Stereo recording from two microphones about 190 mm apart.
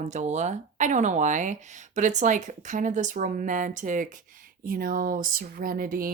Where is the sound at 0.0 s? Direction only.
40° right (ahead or behind).